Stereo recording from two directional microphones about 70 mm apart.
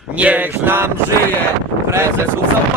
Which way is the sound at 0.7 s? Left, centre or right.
Right.